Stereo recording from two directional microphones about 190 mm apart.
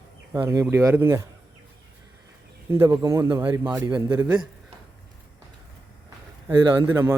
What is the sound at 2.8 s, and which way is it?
Speech, 20° right (ahead or behind).